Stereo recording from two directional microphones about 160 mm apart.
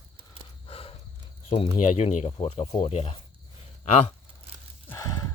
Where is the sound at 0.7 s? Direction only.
35° left (ahead or behind).